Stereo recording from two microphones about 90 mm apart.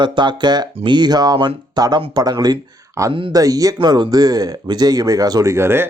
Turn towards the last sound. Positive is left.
turn(degrees=-25)  # may be behind; listen again after turning